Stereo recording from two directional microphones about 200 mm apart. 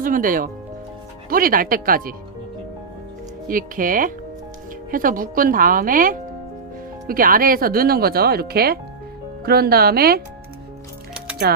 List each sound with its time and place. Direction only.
0.0 s speech: 45° right (ahead or behind)
3.5 s speech: 45° right (ahead or behind)
11.4 s speech: 50° right (ahead or behind)